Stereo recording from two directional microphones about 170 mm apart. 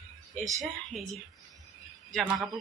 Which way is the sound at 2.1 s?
Centre (ahead or behind).